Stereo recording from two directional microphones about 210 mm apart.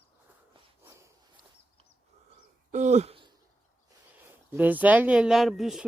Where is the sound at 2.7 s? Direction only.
35° right (ahead or behind).